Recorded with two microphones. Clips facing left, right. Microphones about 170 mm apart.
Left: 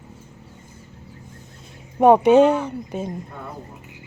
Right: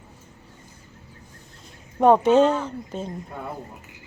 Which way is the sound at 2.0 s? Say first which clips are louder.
Left 3 dB; 15° left (ahead or behind).